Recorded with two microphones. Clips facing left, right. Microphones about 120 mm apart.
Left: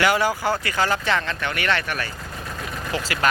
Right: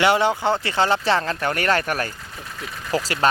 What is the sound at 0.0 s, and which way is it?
Speech, 25° right (ahead or behind).